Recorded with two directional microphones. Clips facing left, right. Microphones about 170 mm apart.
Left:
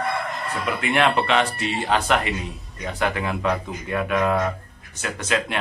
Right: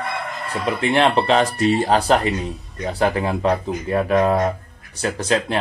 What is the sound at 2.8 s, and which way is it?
Speech, 35° right (ahead or behind).